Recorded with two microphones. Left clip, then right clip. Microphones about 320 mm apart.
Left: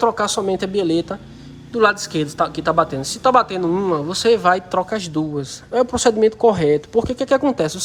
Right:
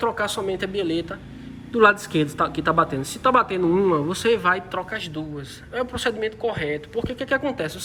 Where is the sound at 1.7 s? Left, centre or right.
Centre.